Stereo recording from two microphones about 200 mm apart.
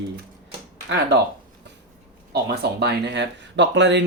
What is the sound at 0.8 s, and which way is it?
Speech, 60° right (ahead or behind).